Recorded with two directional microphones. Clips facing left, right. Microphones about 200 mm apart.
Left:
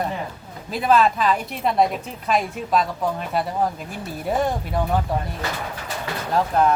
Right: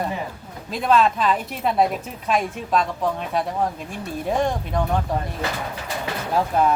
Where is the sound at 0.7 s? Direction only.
5° left (ahead or behind).